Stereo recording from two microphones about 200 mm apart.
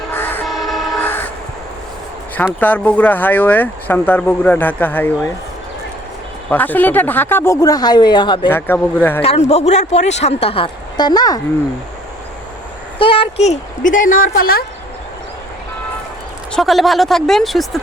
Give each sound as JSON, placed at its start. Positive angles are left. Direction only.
{"t": 0.1, "sound": "train", "side_deg": 10}
{"t": 0.4, "sound": "train", "side_deg": 0}
{"t": 2.3, "sound": "speech", "side_deg": 10}
{"t": 6.5, "sound": "speech", "side_deg": 10}
{"t": 8.4, "sound": "speech", "side_deg": 10}
{"t": 9.2, "sound": "speech", "side_deg": 30}
{"t": 13.0, "sound": "speech", "side_deg": 25}
{"t": 16.5, "sound": "speech", "side_deg": 0}